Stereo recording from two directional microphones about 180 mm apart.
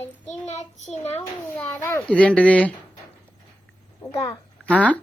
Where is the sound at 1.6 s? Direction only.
5° left (ahead or behind).